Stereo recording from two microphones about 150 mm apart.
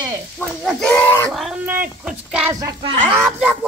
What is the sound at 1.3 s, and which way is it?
Speech, centre (ahead or behind).